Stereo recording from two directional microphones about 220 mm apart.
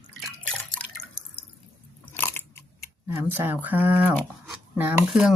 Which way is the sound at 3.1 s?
10° right (ahead or behind).